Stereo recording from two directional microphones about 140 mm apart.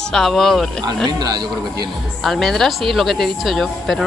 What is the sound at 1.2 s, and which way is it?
Speech, 30° right (ahead or behind).